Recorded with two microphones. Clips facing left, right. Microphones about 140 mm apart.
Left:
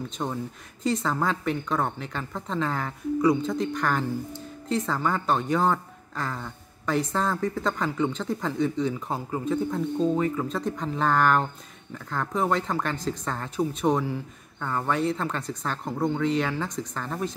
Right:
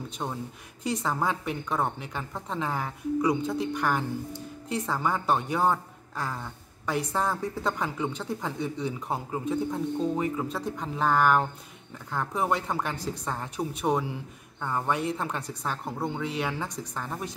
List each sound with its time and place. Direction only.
0.2 s speech: 5° right (ahead or behind)